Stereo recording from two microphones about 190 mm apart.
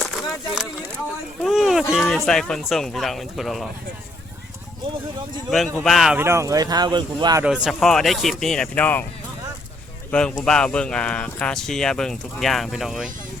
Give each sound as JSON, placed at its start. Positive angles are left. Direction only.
{"t": 0.5, "sound": "speech", "side_deg": -5}
{"t": 1.5, "sound": "a sound", "side_deg": 0}
{"t": 1.9, "sound": "speech", "side_deg": 0}
{"t": 5.5, "sound": "speech", "side_deg": 0}
{"t": 6.2, "sound": "speech", "side_deg": -15}
{"t": 7.4, "sound": "speech", "side_deg": -5}
{"t": 10.1, "sound": "speech", "side_deg": 5}